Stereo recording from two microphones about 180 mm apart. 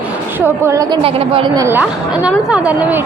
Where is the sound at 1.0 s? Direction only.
30° right (ahead or behind).